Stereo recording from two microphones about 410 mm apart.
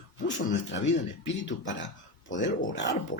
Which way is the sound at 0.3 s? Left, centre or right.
Left.